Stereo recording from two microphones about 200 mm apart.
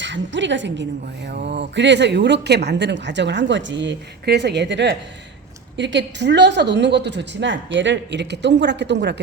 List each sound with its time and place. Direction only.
0.0 s speech: 65° right (ahead or behind)
1.3 s speech: 55° right (ahead or behind)